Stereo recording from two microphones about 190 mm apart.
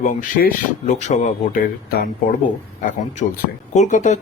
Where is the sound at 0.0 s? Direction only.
45° left (ahead or behind).